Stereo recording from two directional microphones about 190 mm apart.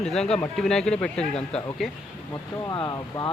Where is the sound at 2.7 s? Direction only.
20° left (ahead or behind).